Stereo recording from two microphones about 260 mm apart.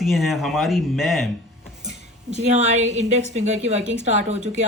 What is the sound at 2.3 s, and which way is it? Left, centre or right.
A woman's voice, right.